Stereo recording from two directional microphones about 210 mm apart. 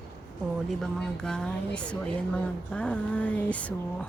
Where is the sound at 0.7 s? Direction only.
Centre (ahead or behind).